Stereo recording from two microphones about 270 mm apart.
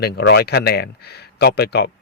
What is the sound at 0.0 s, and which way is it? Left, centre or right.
Speech, left.